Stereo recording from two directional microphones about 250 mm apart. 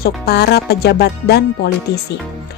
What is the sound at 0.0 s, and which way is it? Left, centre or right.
Speech, left.